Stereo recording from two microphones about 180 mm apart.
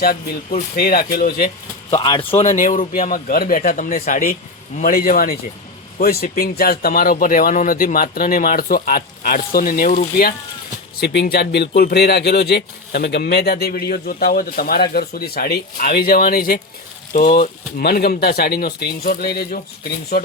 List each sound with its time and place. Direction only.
0.0 s speech: 55° left (ahead or behind)
1.9 s speech: 30° left (ahead or behind)
2.4 s speech: 45° left (ahead or behind)
11.0 s speech: 65° left (ahead or behind)